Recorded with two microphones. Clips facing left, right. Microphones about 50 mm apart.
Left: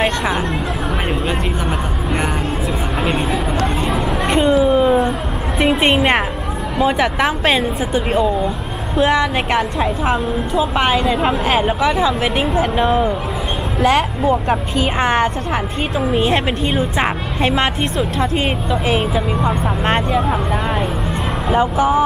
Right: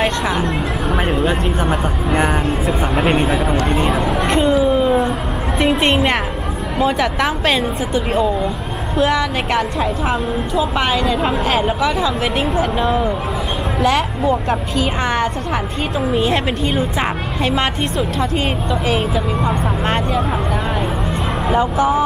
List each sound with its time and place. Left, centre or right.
0.0 s a sound: centre
1.7 s vehicle: right
3.0 s a sound: centre
5.6 s music: centre
6.8 s a woman's voice: centre
12.7 s a woman's voice: centre
15.0 s speech: left
16.1 s a woman's voice: centre
17.0 s speech: left
17.6 s a woman's voice: centre
21.5 s a woman's voice: centre